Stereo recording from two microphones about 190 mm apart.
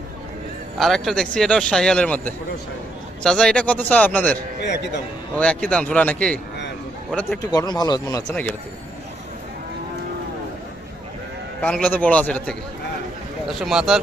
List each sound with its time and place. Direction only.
0.8 s a man's voice: centre (ahead or behind)
4.6 s a man's voice: 65° left (ahead or behind)
5.4 s a man's voice: 5° left (ahead or behind)
7.5 s speech: 20° left (ahead or behind)
8.3 s a man's voice: 10° left (ahead or behind)
11.6 s a man's voice: 5° left (ahead or behind)